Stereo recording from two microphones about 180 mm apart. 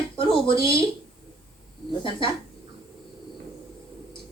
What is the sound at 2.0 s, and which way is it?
Speech, 30° left (ahead or behind).